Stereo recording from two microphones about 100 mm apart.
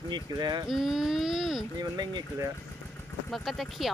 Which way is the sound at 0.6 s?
5° right (ahead or behind).